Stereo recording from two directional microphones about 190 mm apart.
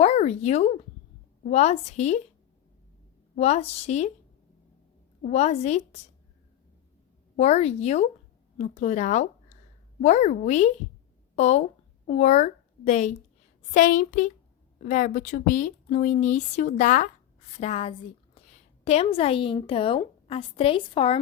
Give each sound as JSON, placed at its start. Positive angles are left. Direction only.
{"t": 0.0, "sound": "speech", "side_deg": 35}
{"t": 3.3, "sound": "speech", "side_deg": 35}
{"t": 5.2, "sound": "speech", "side_deg": 35}
{"t": 7.3, "sound": "a woman's voice", "side_deg": 35}